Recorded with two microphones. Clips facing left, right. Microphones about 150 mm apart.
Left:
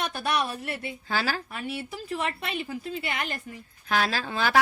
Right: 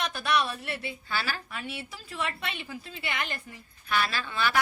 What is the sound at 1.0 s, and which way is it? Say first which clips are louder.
Speech: left 5 dB; 90° left.